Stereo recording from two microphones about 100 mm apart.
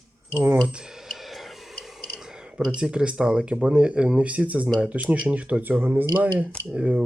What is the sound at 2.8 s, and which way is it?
Speech, 10° right (ahead or behind).